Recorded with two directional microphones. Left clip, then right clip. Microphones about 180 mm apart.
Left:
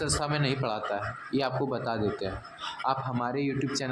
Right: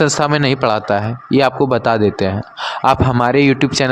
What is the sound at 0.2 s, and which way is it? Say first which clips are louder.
A man's voice: right 15 dB; 25° right (ahead or behind).